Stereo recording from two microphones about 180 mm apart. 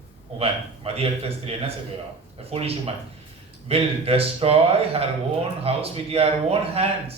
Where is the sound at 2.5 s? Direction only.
35° right (ahead or behind).